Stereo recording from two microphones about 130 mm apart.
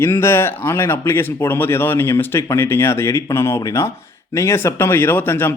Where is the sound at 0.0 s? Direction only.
20° left (ahead or behind).